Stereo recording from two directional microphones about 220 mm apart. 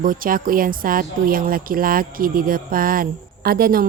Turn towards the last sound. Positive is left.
turn(degrees=-40)  # may be behind; listen again after turning